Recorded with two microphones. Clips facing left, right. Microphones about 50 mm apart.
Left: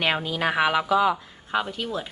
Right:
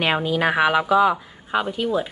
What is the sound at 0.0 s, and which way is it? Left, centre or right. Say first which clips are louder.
Speech: right 4 dB; centre.